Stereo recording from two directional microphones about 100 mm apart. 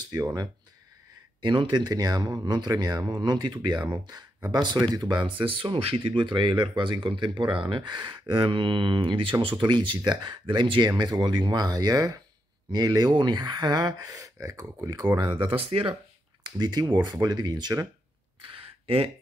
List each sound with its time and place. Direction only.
0.0 s speech: 40° right (ahead or behind)
1.4 s speech: 50° right (ahead or behind)
15.1 s speech: 50° right (ahead or behind)
16.4 s speech: 45° right (ahead or behind)
18.4 s a sound: 60° right (ahead or behind)